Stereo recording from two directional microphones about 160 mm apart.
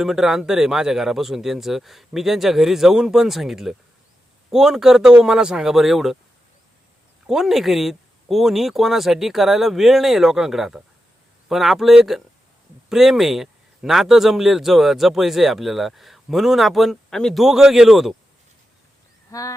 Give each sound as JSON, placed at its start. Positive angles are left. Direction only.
{"t": 0.0, "sound": "speech", "side_deg": -5}
{"t": 7.3, "sound": "speech", "side_deg": 0}
{"t": 19.3, "sound": "speech", "side_deg": 20}